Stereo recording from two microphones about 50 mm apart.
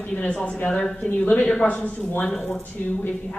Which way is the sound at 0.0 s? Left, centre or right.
Left.